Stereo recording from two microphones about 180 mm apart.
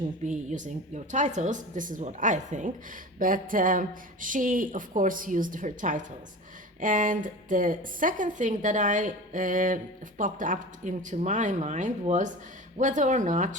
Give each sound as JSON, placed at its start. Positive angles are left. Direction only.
{"t": 0.3, "sound": "a woman's voice", "side_deg": -45}